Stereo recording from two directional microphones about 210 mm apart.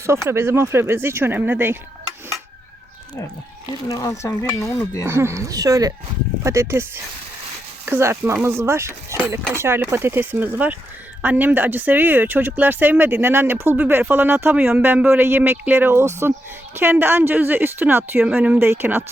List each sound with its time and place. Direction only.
0.0 s speech: 15° right (ahead or behind)
3.8 s cutlery: 15° left (ahead or behind)
5.0 s speech: 10° right (ahead or behind)